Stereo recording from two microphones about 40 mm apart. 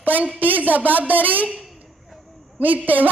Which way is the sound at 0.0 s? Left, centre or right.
Right.